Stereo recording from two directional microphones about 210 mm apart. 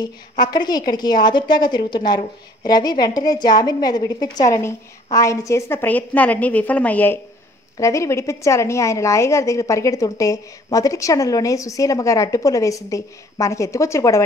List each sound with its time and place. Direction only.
0.4 s a woman's voice: 20° left (ahead or behind)